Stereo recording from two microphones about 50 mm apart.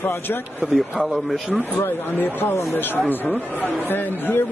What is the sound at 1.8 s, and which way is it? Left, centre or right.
Speech, left.